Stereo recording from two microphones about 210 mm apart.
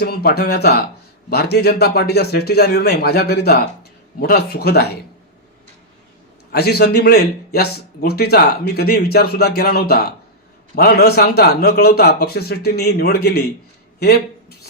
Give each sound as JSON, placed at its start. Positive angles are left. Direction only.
{"t": 0.0, "sound": "speech", "side_deg": 45}
{"t": 6.5, "sound": "speech", "side_deg": 50}